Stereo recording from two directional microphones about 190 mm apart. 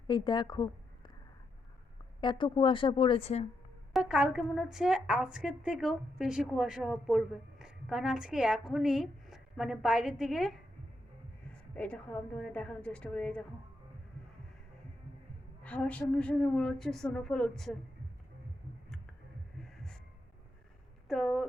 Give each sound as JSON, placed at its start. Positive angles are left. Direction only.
{"t": 0.1, "sound": "a woman's voice", "side_deg": 25}
{"t": 2.2, "sound": "speech", "side_deg": 25}
{"t": 3.9, "sound": "a woman's voice", "side_deg": 0}
{"t": 11.7, "sound": "a woman's voice", "side_deg": 5}
{"t": 15.6, "sound": "a woman's voice", "side_deg": 5}
{"t": 19.7, "sound": "heart sounds", "side_deg": 5}
{"t": 21.1, "sound": "a woman's voice", "side_deg": 0}